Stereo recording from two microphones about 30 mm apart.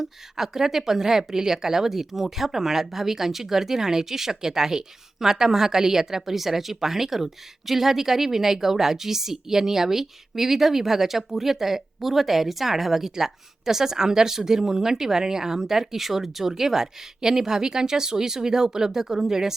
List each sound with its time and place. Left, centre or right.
0.0 s a woman's voice: centre